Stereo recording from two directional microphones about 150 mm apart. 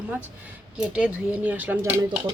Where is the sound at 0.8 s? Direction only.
5° right (ahead or behind).